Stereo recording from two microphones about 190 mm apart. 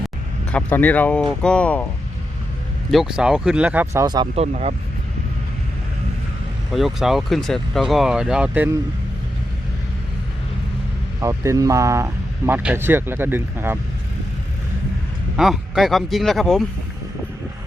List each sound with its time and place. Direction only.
0.5 s speech: 10° left (ahead or behind)
2.9 s speech: centre (ahead or behind)
4.0 s speech: 25° right (ahead or behind)
6.7 s speech: centre (ahead or behind)
11.2 s speech: 15° right (ahead or behind)
15.4 s speech: centre (ahead or behind)